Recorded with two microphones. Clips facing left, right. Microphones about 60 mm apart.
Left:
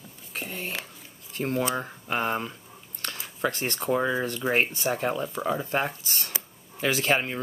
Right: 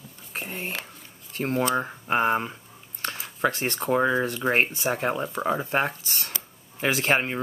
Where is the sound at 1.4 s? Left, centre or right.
Right.